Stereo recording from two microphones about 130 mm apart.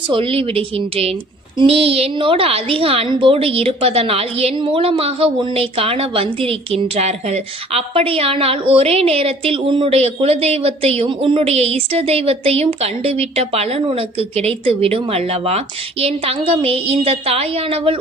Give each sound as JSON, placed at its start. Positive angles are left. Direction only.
{"t": 0.1, "sound": "a woman's voice", "side_deg": -45}